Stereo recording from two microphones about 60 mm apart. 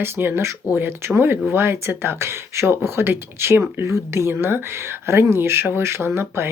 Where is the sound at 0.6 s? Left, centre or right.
Right.